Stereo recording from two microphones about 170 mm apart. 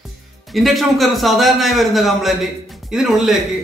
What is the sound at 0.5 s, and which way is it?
A man's voice, centre (ahead or behind).